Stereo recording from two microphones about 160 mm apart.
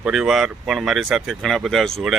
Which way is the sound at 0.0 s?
5° right (ahead or behind).